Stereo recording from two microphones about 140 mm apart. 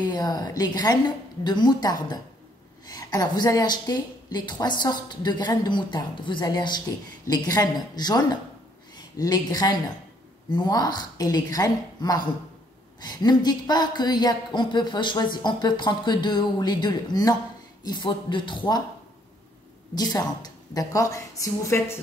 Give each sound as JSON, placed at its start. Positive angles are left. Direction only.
{"t": 0.0, "sound": "a woman's voice", "side_deg": 30}
{"t": 19.9, "sound": "a woman's voice", "side_deg": 30}